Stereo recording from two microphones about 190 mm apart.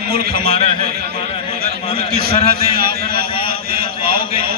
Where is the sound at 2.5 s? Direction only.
55° right (ahead or behind).